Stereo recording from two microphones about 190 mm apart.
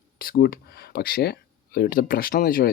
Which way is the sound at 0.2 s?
50° left (ahead or behind).